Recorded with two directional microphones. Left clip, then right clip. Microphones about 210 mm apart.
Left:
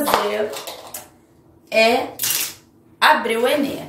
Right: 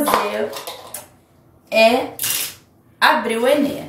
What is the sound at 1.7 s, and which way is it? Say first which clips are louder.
Speech: right 2 dB; centre (ahead or behind).